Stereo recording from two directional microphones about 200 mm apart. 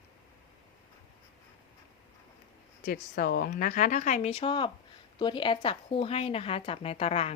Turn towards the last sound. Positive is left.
turn(degrees=30)  # may be behind; listen again after turning